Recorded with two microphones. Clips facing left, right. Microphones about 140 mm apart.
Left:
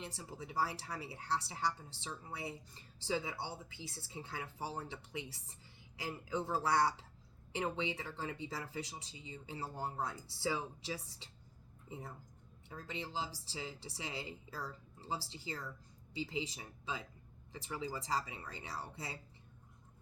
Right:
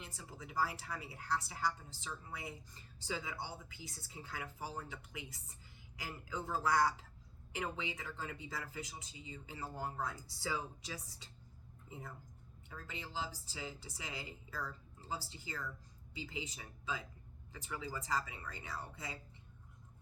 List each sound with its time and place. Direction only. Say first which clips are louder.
0.0 s speech: left 4 dB; 30° left (ahead or behind)